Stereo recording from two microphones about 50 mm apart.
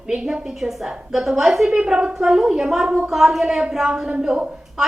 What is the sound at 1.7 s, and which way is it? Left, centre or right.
A woman's voice, centre.